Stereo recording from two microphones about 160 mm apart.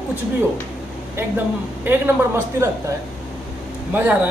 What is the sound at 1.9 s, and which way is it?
Speech, 15° right (ahead or behind).